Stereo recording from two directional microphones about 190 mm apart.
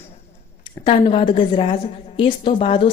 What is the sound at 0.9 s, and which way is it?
A woman's voice, 30° left (ahead or behind).